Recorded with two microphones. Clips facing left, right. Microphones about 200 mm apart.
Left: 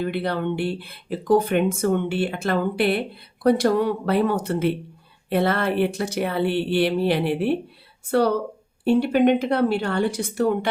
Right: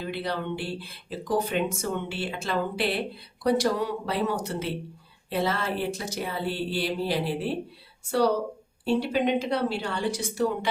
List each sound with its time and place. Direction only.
0.0 s speech: 55° left (ahead or behind)
8.8 s speech: 60° left (ahead or behind)